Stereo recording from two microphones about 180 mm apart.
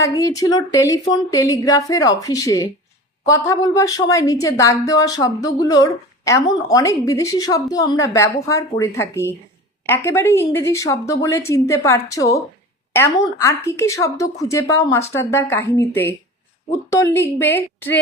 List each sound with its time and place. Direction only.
0.0 s a woman's voice: 20° left (ahead or behind)